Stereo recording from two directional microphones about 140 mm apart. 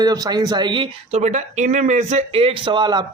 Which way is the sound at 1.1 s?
50° right (ahead or behind).